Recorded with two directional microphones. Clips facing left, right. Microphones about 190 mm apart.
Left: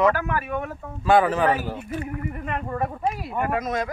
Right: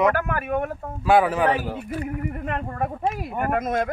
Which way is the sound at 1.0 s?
10° right (ahead or behind).